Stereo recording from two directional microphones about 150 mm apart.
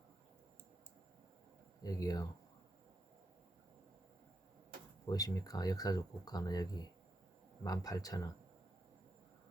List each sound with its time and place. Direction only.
1.8 s speech: 25° left (ahead or behind)
5.0 s speech: 25° left (ahead or behind)